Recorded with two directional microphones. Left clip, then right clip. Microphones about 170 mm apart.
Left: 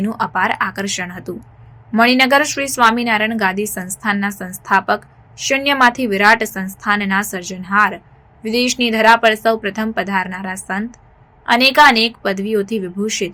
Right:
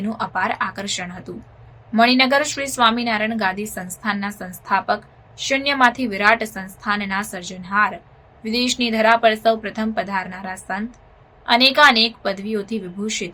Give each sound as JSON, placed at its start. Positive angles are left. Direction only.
{"t": 0.0, "sound": "a woman's voice", "side_deg": 20}